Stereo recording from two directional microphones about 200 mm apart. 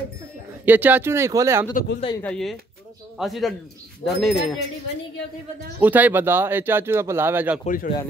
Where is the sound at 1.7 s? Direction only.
50° left (ahead or behind).